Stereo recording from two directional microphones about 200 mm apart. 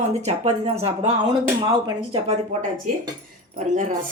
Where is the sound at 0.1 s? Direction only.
35° right (ahead or behind).